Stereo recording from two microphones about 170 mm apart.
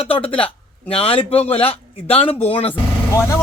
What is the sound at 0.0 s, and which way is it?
Speech, 35° left (ahead or behind).